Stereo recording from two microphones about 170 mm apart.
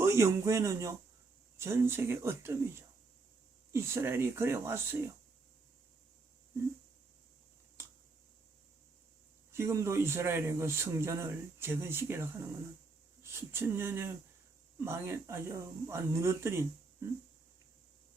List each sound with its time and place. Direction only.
0.0 s speech: 15° right (ahead or behind)
9.5 s speech: 15° right (ahead or behind)